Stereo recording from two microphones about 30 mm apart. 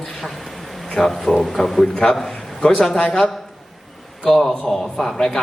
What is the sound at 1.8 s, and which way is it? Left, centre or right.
Speech, left.